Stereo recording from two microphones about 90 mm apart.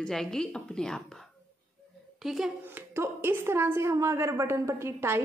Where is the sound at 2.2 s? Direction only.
5° right (ahead or behind).